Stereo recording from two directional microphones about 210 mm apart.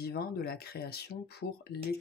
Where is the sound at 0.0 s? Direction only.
50° left (ahead or behind).